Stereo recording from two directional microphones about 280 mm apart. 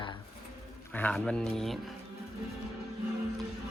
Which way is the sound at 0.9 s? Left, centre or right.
Centre.